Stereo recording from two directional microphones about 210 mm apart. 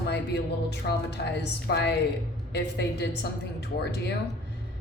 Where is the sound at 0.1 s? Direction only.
55° left (ahead or behind).